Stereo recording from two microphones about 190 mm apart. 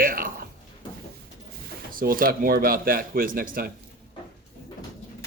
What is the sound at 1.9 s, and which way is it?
Speech, 50° right (ahead or behind).